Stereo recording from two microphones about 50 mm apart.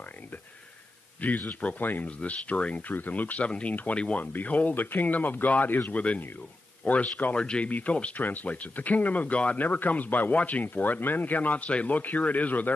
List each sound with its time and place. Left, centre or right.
1.5 s speech: left
1.8 s speech: left
2.0 s speech: left
2.9 s speech: left
7.3 s speech: left